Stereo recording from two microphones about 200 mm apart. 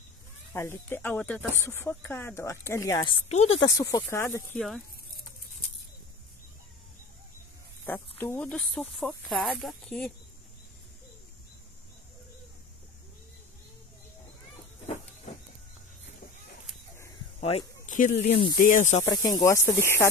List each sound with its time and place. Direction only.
0.5 s speech: 10° left (ahead or behind)
4.6 s speech: centre (ahead or behind)
7.8 s speech: 10° left (ahead or behind)
17.4 s a sound: 30° left (ahead or behind)
18.2 s speech: 25° left (ahead or behind)
18.6 s speech: 40° left (ahead or behind)
19.0 s speech: 20° left (ahead or behind)